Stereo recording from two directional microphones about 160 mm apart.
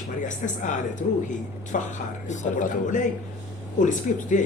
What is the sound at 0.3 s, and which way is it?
A man's voice, 50° left (ahead or behind).